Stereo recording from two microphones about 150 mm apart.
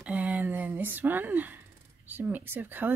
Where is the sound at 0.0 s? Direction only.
10° right (ahead or behind).